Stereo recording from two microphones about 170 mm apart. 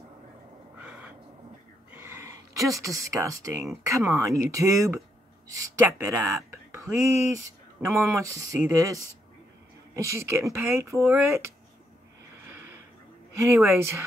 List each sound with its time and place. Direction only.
0.7 s a sound: 10° right (ahead or behind)
2.7 s speech: 20° right (ahead or behind)
12.4 s snort: 10° right (ahead or behind)
13.4 s speech: 15° right (ahead or behind)